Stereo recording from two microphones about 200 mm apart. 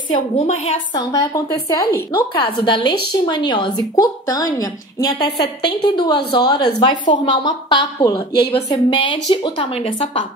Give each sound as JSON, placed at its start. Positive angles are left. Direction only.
{"t": 0.1, "sound": "a woman's voice", "side_deg": 30}
{"t": 0.9, "sound": "a woman's voice", "side_deg": 15}